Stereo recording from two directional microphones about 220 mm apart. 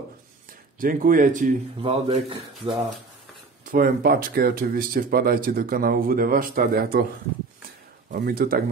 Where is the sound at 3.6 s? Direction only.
40° right (ahead or behind).